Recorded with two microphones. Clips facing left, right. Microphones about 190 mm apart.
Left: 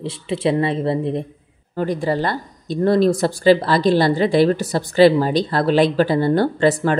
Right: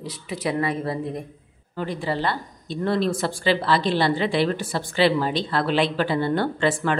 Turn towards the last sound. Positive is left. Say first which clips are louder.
# left 6 dB
turn(degrees=40)  # may be behind; listen again after turning